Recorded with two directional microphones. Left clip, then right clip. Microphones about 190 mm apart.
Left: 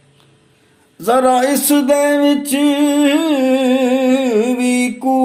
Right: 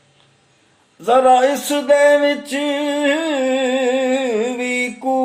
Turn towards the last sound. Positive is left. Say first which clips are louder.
# left 3 dB
turn(degrees=40)  # may be behind; listen again after turning